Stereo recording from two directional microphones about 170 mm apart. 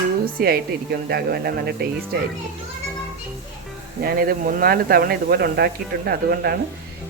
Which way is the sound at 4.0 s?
60° right (ahead or behind).